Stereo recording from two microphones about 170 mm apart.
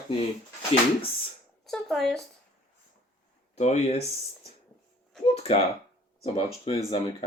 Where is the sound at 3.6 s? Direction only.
40° left (ahead or behind).